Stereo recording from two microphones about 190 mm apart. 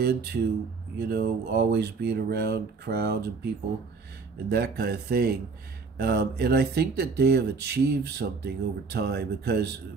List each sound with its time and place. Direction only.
0.0 s speech: 55° right (ahead or behind)
4.5 s speech: 55° right (ahead or behind)